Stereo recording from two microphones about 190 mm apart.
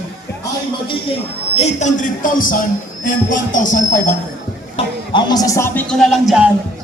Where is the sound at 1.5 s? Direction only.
35° left (ahead or behind).